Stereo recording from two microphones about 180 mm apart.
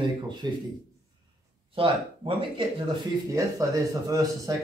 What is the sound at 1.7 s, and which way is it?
Speech, 30° right (ahead or behind).